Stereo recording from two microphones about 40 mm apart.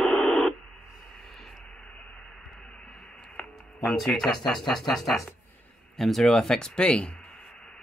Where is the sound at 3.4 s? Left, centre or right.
Left.